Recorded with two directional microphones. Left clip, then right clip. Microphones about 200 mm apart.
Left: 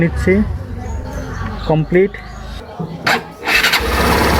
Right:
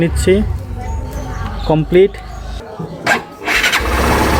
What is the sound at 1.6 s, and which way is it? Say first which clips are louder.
Speech: right 3 dB; 15° right (ahead or behind).